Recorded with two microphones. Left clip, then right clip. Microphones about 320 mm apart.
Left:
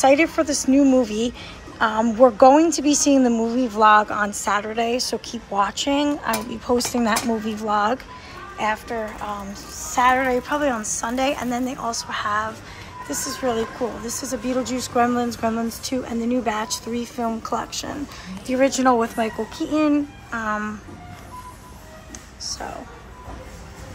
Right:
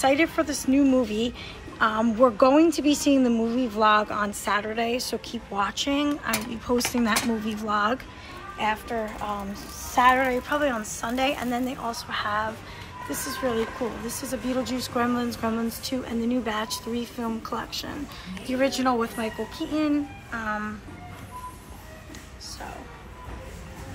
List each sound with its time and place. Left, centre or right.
0.0 s a woman's voice: centre
13.1 s a woman's voice: centre
15.0 s a woman's voice: centre